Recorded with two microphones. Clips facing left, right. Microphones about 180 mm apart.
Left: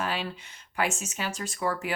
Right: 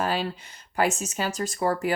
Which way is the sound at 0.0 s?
40° right (ahead or behind).